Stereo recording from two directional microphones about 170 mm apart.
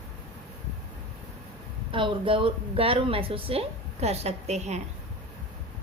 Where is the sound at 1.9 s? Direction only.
30° right (ahead or behind).